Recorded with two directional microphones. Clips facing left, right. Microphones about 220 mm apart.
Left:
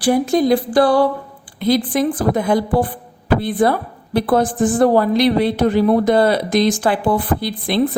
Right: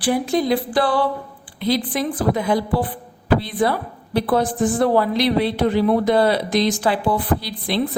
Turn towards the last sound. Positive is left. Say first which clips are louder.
# left 2 dB
turn(degrees=50)  # may be behind; listen again after turning